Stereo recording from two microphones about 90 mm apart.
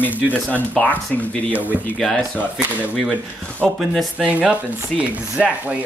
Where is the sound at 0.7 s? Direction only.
15° left (ahead or behind).